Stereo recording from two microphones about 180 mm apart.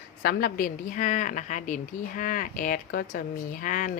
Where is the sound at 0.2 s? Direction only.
55° left (ahead or behind).